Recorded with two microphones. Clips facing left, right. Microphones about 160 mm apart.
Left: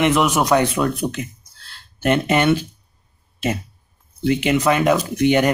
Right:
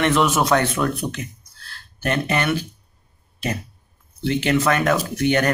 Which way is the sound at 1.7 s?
20° left (ahead or behind).